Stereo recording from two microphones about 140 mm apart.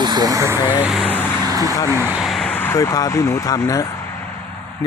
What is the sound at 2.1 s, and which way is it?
Vehicle, centre (ahead or behind).